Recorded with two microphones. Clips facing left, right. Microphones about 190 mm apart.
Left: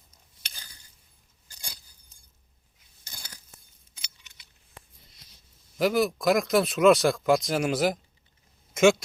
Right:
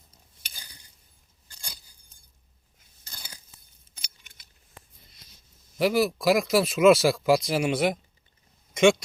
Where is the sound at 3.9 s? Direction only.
45° right (ahead or behind).